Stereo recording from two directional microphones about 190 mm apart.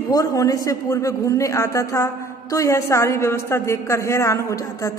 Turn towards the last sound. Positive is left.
turn(degrees=15)  # may be behind; listen again after turning